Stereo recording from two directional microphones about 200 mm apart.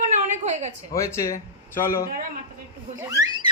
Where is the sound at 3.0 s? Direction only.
15° right (ahead or behind).